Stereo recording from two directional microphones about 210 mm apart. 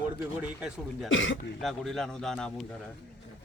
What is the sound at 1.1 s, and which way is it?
Speech, 65° left (ahead or behind).